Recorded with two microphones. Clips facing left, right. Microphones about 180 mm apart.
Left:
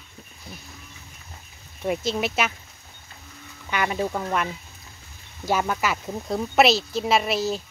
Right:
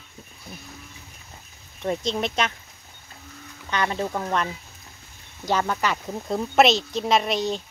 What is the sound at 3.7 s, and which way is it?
Speech, 10° left (ahead or behind).